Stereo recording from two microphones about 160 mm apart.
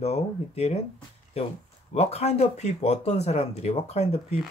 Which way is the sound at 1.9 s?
40° left (ahead or behind).